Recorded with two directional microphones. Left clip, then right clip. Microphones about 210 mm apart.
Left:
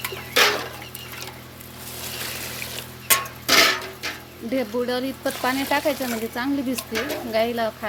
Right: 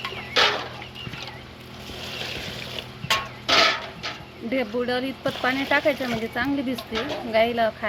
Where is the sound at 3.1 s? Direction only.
55° left (ahead or behind).